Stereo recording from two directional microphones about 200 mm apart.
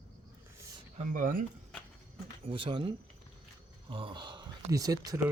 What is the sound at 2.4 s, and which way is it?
Speech, 25° right (ahead or behind).